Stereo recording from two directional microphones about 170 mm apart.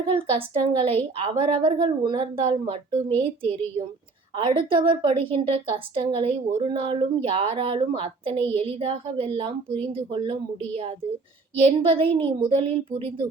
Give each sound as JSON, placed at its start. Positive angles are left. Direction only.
{"t": 0.2, "sound": "a woman's voice", "side_deg": -30}
{"t": 11.5, "sound": "a woman's voice", "side_deg": -35}